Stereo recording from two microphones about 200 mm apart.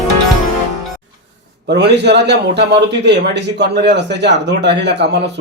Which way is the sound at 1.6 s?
55° right (ahead or behind).